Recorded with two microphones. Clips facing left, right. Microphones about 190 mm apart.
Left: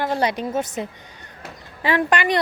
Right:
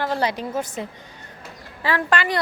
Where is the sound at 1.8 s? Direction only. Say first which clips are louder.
Left 3 dB; 20° left (ahead or behind).